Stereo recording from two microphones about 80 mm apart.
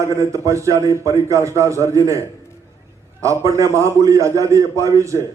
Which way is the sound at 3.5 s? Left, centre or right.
Right.